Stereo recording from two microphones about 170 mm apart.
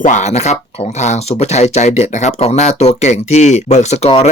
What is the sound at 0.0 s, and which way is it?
Speech, 45° left (ahead or behind).